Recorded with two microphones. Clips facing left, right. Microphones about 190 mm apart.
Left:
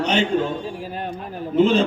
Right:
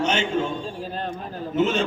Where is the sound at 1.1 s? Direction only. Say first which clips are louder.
Left 7 dB; 35° left (ahead or behind).